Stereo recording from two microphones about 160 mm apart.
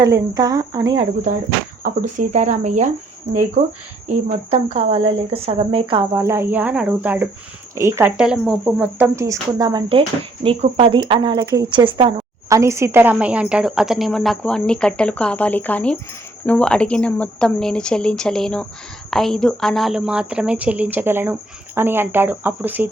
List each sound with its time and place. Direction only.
0.0 s speech: 25° right (ahead or behind)
0.9 s speech: 55° right (ahead or behind); by 6.1 s 30° right (ahead or behind)
6.1 s speech: 15° right (ahead or behind)
8.2 s speech: 5° right (ahead or behind); by 10.0 s 25° right (ahead or behind)
10.4 s speech: 35° right (ahead or behind)
12.5 s a woman's voice: 15° right (ahead or behind)